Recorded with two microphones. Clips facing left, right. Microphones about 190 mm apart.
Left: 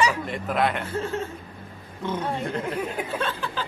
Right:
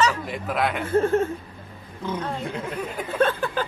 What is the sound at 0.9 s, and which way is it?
Speech, 50° right (ahead or behind).